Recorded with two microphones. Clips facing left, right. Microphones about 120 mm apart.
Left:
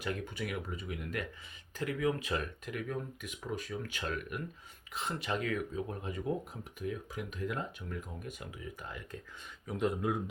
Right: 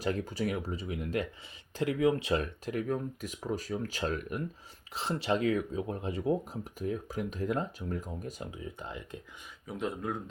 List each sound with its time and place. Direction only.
0.0 s speech: 35° right (ahead or behind)
9.6 s speech: centre (ahead or behind)